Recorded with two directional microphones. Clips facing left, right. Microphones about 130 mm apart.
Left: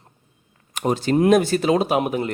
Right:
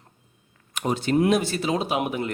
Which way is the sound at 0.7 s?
40° left (ahead or behind).